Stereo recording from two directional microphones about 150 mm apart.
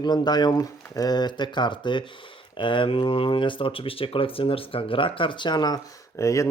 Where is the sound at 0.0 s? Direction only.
30° left (ahead or behind).